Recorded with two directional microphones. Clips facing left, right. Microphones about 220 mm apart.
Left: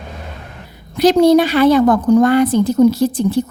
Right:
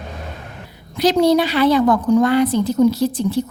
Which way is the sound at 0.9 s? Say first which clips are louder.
Left 4 dB; 50° left (ahead or behind).